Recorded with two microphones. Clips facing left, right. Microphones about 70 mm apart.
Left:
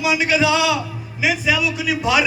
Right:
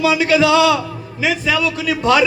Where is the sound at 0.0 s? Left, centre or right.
Centre.